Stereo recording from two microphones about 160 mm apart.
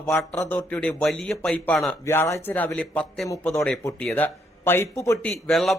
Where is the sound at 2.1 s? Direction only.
15° left (ahead or behind).